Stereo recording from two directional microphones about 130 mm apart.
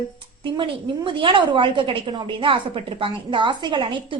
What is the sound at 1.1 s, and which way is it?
A woman's voice, 40° right (ahead or behind).